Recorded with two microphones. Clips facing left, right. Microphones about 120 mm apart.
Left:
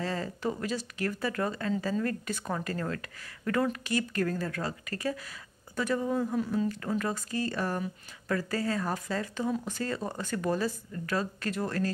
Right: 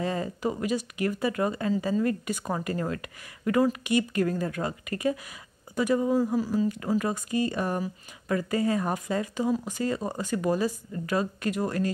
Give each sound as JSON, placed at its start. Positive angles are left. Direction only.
{"t": 0.0, "sound": "speech", "side_deg": -15}